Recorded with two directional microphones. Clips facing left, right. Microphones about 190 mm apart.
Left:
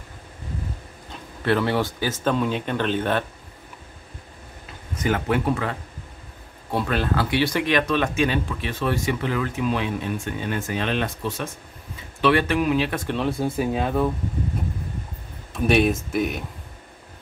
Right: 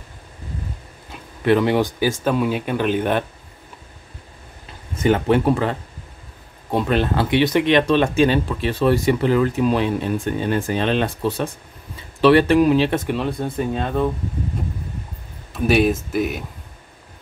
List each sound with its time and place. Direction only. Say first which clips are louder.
1.4 s speech: right 5 dB; 15° right (ahead or behind)
4.9 s speech: right 6 dB; 30° right (ahead or behind)
13.1 s speech: right 1 dB; centre (ahead or behind)
15.5 s speech: right 2 dB; centre (ahead or behind)